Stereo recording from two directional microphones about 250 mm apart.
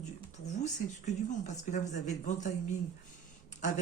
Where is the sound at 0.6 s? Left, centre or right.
Left.